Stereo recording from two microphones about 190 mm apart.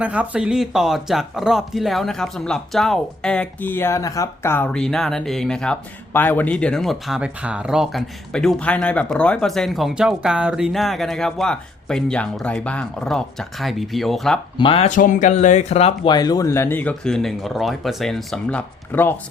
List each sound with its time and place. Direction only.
0.0 s speech: 5° right (ahead or behind)
14.6 s speech: 30° left (ahead or behind)
14.8 s speech: 40° left (ahead or behind)
16.1 s speech: 20° left (ahead or behind)